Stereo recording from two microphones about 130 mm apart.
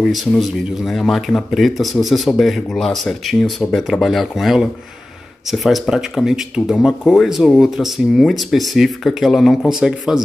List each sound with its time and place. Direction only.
0.1 s speech: centre (ahead or behind)